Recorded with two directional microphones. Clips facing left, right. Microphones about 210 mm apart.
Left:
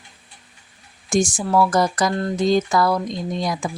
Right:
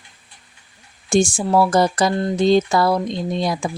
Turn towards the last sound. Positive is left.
turn(degrees=-30)  # may be behind; listen again after turning